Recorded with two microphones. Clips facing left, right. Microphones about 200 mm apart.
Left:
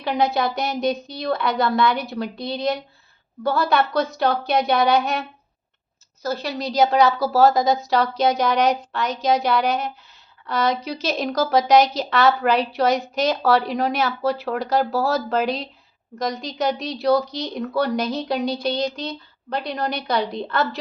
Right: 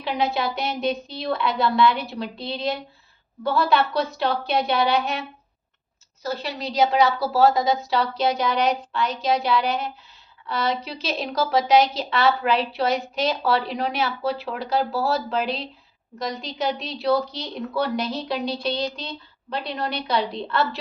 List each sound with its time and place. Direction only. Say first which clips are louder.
0.0 s a woman's voice: left 3 dB; 45° left (ahead or behind)
6.2 s a woman's voice: left 3 dB; 45° left (ahead or behind)